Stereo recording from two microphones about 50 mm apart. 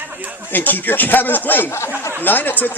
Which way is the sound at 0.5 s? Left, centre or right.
Left.